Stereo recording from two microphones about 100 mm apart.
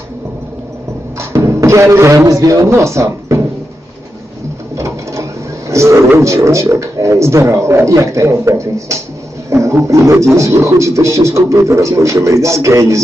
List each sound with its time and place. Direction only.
1.2 s a man's voice: 30° right (ahead or behind)
5.6 s a sound: 30° right (ahead or behind)
6.1 s speech: 30° right (ahead or behind)